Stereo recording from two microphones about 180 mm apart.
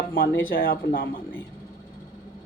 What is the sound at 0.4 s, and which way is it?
Speech, 55° left (ahead or behind).